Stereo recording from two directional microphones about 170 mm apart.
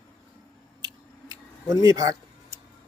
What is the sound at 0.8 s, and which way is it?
Scissors, 20° right (ahead or behind).